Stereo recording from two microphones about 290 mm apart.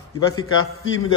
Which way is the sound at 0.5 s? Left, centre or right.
Left.